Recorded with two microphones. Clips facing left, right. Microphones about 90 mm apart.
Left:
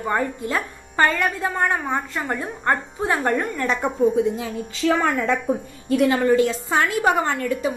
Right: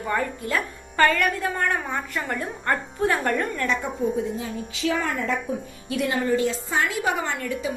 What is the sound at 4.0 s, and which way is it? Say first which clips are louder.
A woman's voice: left 6 dB; 55° left (ahead or behind).